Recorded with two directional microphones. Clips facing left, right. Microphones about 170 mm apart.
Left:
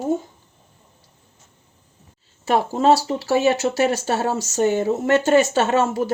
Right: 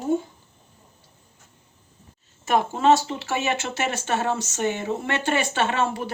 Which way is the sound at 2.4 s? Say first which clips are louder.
Left 2 dB; 35° left (ahead or behind).